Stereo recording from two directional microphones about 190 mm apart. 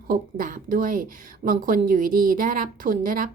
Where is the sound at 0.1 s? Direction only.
45° right (ahead or behind).